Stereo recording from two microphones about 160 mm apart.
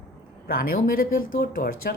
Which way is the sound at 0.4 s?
65° left (ahead or behind).